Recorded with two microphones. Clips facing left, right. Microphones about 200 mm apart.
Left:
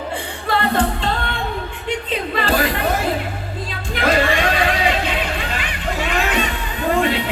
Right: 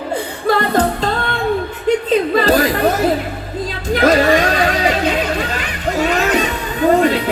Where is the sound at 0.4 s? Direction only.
40° right (ahead or behind).